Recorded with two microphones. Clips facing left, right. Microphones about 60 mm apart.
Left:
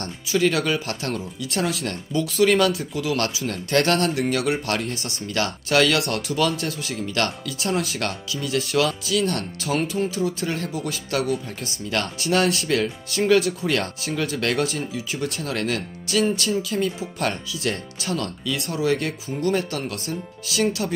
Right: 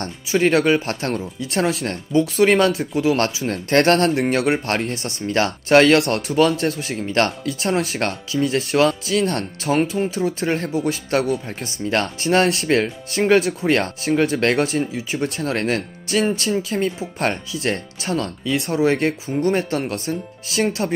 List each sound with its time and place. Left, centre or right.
0.0 s speech: right